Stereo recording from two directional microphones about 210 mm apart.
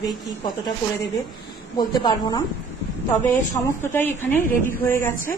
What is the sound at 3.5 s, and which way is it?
Speech, 10° left (ahead or behind).